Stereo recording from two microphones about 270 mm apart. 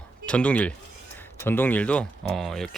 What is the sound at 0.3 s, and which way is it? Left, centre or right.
Speech, centre.